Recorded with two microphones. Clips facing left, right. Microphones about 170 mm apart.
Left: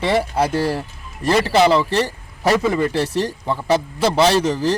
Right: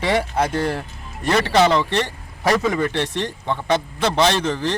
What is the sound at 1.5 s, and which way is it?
Speech, 5° left (ahead or behind).